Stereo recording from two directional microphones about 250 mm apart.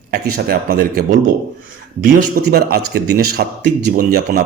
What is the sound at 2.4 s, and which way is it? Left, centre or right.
Speech, right.